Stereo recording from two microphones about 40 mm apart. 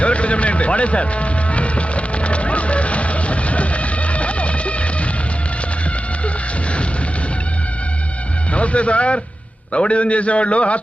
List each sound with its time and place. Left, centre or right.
0.0 s music: left
8.5 s a man's voice: left